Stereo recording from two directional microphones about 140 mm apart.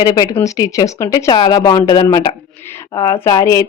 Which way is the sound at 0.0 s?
25° left (ahead or behind).